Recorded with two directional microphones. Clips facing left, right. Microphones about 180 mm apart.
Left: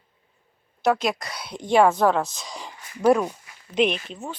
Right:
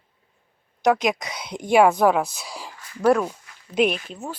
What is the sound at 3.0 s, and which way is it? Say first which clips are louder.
Speech: even; 5° left (ahead or behind).